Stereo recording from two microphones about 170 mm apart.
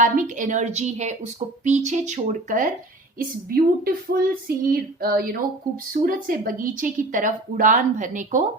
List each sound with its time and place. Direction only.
0.0 s a woman's voice: 50° right (ahead or behind)
3.2 s child singing: 60° right (ahead or behind)
5.9 s a woman's voice: 55° right (ahead or behind)